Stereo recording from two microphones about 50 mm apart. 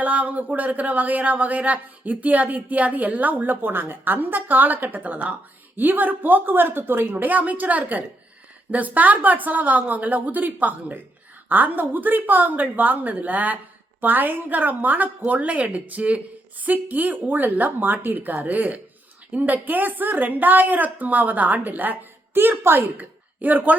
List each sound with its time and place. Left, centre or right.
0.0 s a woman's voice: right
23.0 s speech: right